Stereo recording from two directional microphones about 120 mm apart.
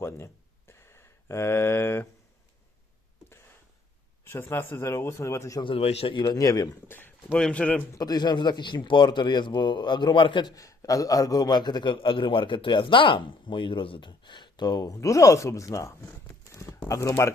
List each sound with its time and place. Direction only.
0.7 s a sound: 20° left (ahead or behind)
4.2 s speech: 20° left (ahead or behind)
5.6 s a man's voice: 55° left (ahead or behind); by 6.7 s 30° left (ahead or behind)
6.8 s a man's voice: 15° left (ahead or behind)
7.9 s a man's voice: 35° left (ahead or behind)